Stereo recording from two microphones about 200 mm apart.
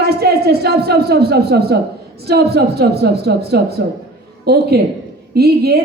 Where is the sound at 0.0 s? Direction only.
55° right (ahead or behind).